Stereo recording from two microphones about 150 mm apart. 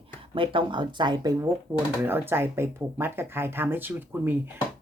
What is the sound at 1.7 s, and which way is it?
Speech, 15° right (ahead or behind).